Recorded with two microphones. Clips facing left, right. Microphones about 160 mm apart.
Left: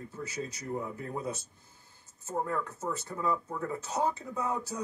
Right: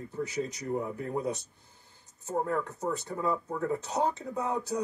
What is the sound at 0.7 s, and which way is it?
Speech, 20° right (ahead or behind).